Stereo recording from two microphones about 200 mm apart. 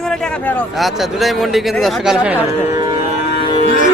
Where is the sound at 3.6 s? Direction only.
45° left (ahead or behind).